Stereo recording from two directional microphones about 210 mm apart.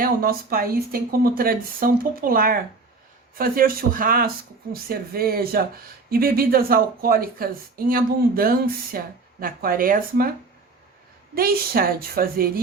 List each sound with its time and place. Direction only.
0.0 s speech: 45° right (ahead or behind)
11.3 s speech: 45° right (ahead or behind)